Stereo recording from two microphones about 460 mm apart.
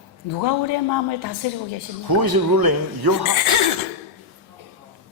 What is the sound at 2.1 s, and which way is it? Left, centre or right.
A man's voice, right.